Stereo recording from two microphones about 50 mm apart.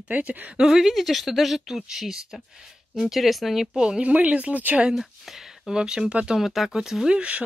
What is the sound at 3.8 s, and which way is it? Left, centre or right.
Speech, centre.